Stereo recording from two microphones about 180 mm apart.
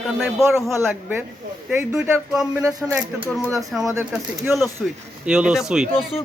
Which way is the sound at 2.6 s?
15° right (ahead or behind).